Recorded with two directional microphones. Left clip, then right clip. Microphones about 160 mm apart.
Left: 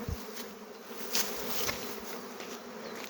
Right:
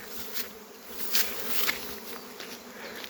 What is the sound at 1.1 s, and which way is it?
Bee, centre (ahead or behind).